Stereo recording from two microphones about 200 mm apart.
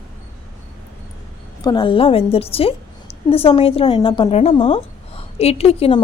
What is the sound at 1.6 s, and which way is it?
A woman's voice, 25° left (ahead or behind).